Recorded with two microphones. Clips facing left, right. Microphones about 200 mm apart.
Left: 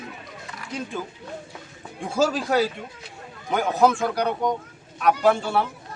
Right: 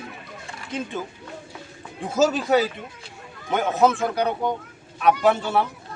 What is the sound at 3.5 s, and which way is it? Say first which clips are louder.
A man's voice: even; centre (ahead or behind).